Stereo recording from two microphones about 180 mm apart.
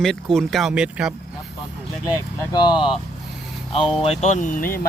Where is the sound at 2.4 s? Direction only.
25° left (ahead or behind).